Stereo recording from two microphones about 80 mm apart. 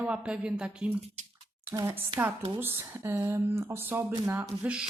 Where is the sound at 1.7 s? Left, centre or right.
Right.